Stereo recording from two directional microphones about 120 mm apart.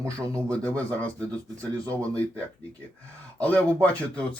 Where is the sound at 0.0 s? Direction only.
25° right (ahead or behind).